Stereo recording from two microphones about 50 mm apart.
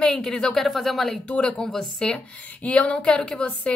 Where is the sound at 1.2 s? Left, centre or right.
Left.